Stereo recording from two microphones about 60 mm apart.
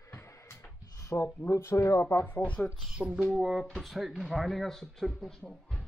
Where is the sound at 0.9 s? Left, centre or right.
Left.